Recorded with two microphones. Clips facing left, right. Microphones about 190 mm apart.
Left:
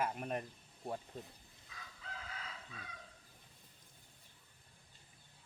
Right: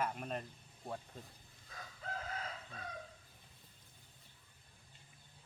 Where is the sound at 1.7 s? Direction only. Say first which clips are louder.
Right 6 dB; 45° right (ahead or behind).